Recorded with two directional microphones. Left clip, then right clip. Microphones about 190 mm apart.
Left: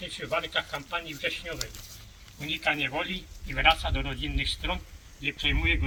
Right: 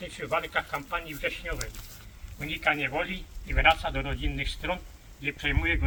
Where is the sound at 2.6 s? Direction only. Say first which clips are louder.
Right 2 dB; 5° right (ahead or behind).